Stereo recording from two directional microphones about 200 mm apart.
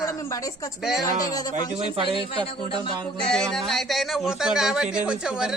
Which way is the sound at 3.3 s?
Centre (ahead or behind).